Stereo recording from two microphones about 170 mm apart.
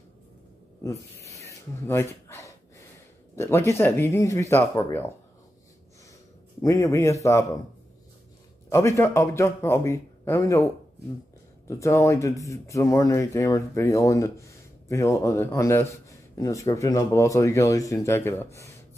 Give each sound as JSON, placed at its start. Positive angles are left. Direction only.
{"t": 1.2, "sound": "a sound", "side_deg": 15}
{"t": 2.2, "sound": "gasp", "side_deg": 15}
{"t": 3.3, "sound": "speech", "side_deg": 15}
{"t": 6.6, "sound": "speech", "side_deg": 20}
{"t": 8.6, "sound": "speech", "side_deg": 15}